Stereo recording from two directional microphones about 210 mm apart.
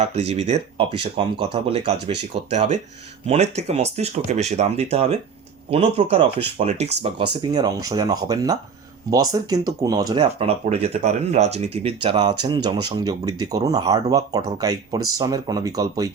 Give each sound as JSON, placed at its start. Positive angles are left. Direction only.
{"t": 0.0, "sound": "speech", "side_deg": -30}